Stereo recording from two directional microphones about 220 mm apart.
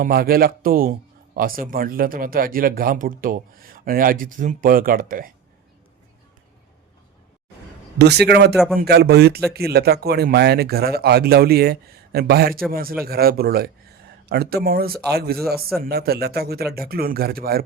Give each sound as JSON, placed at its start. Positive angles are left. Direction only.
{"t": 0.0, "sound": "speech", "side_deg": -45}
{"t": 7.9, "sound": "speech", "side_deg": -50}
{"t": 8.5, "sound": "a man's voice", "side_deg": 0}
{"t": 8.8, "sound": "speech", "side_deg": -45}